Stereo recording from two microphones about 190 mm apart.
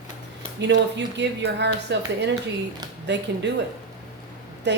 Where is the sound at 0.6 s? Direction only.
65° right (ahead or behind).